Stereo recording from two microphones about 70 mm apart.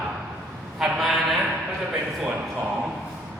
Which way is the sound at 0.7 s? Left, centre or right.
Centre.